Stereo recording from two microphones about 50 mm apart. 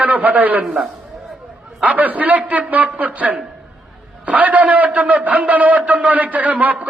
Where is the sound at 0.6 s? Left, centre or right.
Centre.